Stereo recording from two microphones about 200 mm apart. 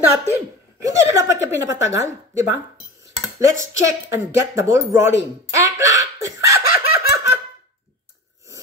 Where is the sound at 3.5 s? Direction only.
15° right (ahead or behind).